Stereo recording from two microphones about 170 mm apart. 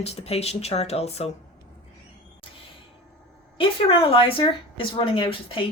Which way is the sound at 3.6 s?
30° left (ahead or behind).